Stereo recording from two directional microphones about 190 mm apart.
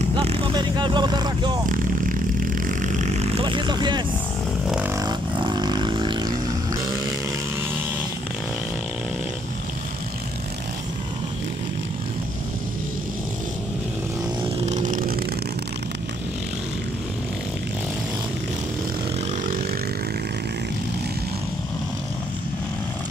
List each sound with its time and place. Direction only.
0.1 s speech: 30° right (ahead or behind)
1.7 s vehicle: 45° right (ahead or behind); by 4.0 s 25° right (ahead or behind)
4.6 s vehicle: 10° right (ahead or behind)
5.0 s vehicle: 20° right (ahead or behind)
14.7 s vehicle: 40° right (ahead or behind)